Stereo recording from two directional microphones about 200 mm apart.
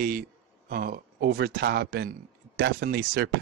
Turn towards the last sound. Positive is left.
turn(degrees=-55)  # may be behind; listen again after turning